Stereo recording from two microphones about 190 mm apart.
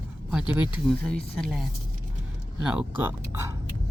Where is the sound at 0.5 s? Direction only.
25° left (ahead or behind).